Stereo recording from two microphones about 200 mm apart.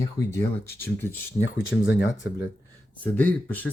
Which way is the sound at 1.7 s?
65° left (ahead or behind).